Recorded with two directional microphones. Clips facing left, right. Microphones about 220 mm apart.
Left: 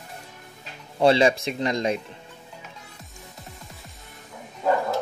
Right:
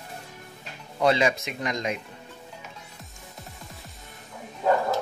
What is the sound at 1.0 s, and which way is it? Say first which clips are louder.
Speech: left 4 dB; 30° left (ahead or behind).